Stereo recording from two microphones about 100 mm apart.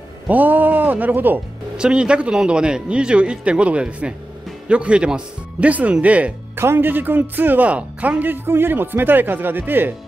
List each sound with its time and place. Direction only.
0.3 s speech: 20° right (ahead or behind)